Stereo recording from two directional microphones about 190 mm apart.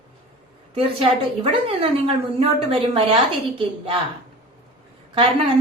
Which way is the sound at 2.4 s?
30° right (ahead or behind).